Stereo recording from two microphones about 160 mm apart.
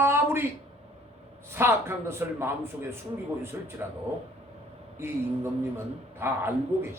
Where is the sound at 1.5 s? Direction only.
15° right (ahead or behind).